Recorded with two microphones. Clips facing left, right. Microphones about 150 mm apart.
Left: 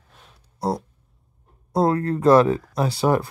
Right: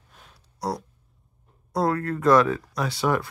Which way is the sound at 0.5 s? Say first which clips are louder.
Left 4 dB; 25° left (ahead or behind).